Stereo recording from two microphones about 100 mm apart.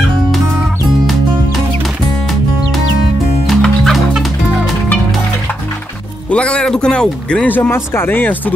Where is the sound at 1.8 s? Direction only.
Centre (ahead or behind).